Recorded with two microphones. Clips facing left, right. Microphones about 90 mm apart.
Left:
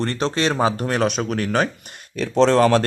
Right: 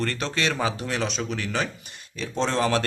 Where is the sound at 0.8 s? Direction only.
50° left (ahead or behind).